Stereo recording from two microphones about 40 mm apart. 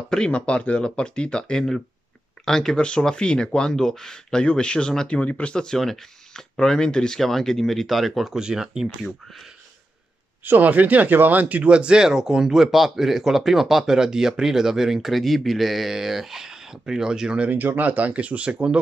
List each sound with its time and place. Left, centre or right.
0.3 s speech: left; by 2.8 s centre
2.8 s speech: left
7.2 s speech: centre
8.4 s speech: centre
10.4 s speech: right
11.6 s speech: right
12.5 s speech: centre
17.5 s speech: right